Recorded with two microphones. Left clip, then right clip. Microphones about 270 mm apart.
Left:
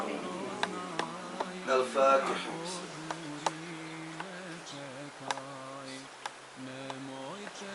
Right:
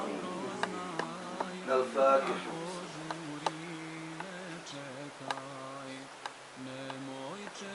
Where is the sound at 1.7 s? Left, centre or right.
Centre.